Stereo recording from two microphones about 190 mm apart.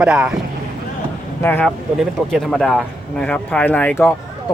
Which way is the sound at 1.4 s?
10° left (ahead or behind).